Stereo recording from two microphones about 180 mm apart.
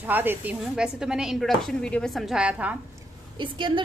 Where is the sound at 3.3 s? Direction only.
25° right (ahead or behind).